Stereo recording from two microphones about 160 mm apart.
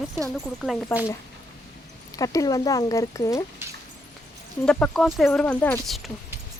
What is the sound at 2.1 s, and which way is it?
Speech, 20° left (ahead or behind).